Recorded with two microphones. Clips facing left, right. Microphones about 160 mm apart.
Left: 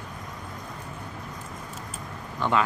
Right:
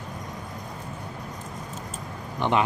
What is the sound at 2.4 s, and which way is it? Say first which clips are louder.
Speech: right 1 dB; 20° right (ahead or behind).